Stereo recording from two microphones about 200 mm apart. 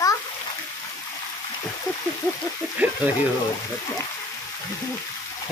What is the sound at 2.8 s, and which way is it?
Speech, 10° right (ahead or behind).